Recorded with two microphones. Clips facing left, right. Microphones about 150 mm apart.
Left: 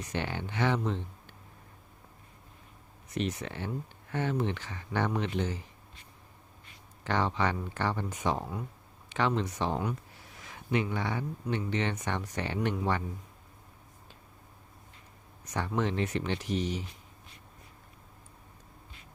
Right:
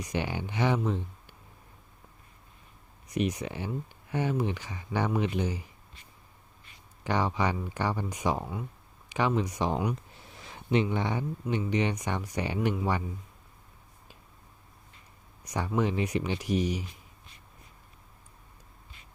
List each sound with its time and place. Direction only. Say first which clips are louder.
0.0 s speech: right 2 dB; 10° right (ahead or behind)
3.1 s speech: right 3 dB; 15° right (ahead or behind)
7.0 s speech: right 1 dB; 10° right (ahead or behind)
11.4 s speech: right 3 dB; 5° right (ahead or behind)
15.4 s speech: right 2 dB; 10° right (ahead or behind)